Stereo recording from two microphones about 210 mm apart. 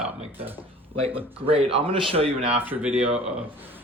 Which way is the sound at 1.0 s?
25° right (ahead or behind).